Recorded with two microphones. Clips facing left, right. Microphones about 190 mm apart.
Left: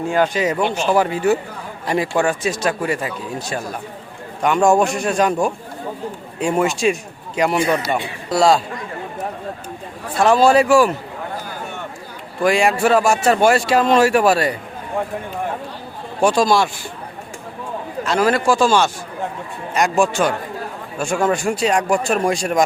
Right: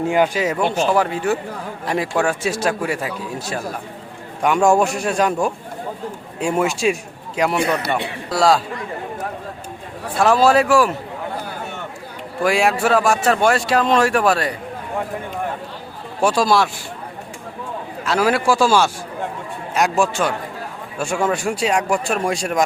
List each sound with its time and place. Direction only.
0.0 s speech: 20° right (ahead or behind)
0.3 s a man's voice: 5° right (ahead or behind)
10.2 s a man's voice: centre (ahead or behind)
12.4 s a man's voice: 5° right (ahead or behind)
16.2 s a man's voice: 5° right (ahead or behind)
18.0 s a man's voice: 5° right (ahead or behind)